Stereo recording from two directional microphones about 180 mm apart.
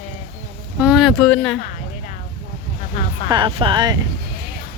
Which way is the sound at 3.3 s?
25° right (ahead or behind).